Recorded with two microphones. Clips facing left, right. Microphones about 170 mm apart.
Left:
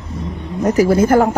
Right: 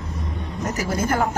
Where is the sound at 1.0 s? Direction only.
50° left (ahead or behind).